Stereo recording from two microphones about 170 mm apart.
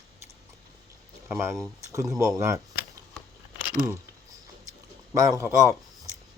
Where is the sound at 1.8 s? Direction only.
20° right (ahead or behind).